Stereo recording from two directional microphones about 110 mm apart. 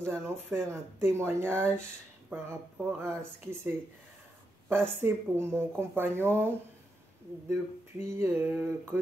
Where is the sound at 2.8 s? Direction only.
25° right (ahead or behind).